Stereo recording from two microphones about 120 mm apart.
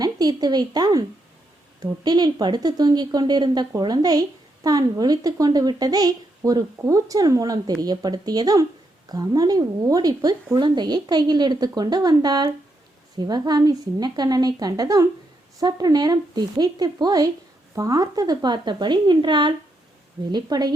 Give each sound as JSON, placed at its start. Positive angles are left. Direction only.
{"t": 0.0, "sound": "a woman's voice", "side_deg": -35}